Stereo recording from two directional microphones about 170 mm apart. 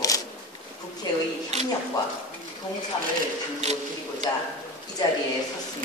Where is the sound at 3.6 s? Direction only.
40° right (ahead or behind).